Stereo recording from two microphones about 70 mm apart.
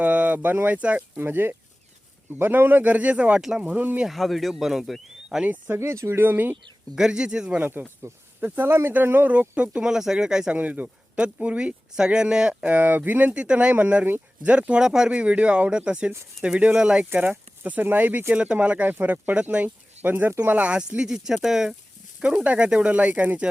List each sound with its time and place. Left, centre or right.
0.0 s speech: right
1.2 s speech: right
4.0 s speech: centre
5.4 s speech: right
6.9 s speech: centre
7.6 s speech: right; by 10.6 s centre
10.6 s speech: centre
12.7 s speech: right
17.1 s speech: right
18.3 s speech: centre